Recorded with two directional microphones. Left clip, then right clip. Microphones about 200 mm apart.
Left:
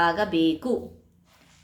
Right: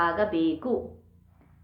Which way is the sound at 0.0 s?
20° left (ahead or behind).